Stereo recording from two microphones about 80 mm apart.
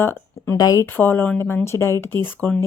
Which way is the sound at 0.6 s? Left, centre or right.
Left.